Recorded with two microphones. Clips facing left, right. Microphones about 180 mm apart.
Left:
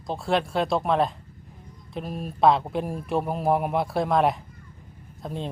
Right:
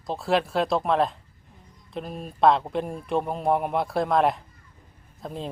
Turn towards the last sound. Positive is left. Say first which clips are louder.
# left 1 dB
turn(degrees=0)  # may be behind; listen again after turning